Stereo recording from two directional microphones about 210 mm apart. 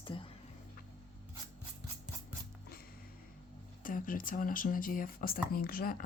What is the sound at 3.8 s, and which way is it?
Speech, 40° left (ahead or behind).